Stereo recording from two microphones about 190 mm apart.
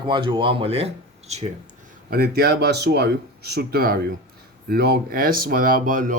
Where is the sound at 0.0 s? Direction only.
25° right (ahead or behind).